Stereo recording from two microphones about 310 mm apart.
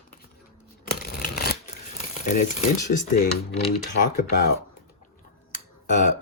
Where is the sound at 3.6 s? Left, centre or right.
Left.